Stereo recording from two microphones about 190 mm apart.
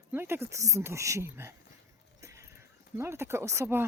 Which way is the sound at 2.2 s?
15° right (ahead or behind).